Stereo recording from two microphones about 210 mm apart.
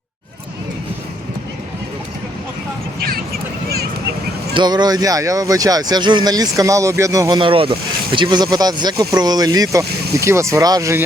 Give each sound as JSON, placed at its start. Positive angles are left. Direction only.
{"t": 4.5, "sound": "speech", "side_deg": -20}